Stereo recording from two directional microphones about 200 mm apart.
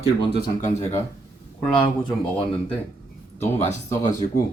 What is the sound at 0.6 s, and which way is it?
Speech, 35° left (ahead or behind).